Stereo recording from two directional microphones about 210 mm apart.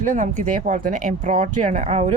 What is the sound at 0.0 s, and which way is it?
A woman's voice, 35° right (ahead or behind).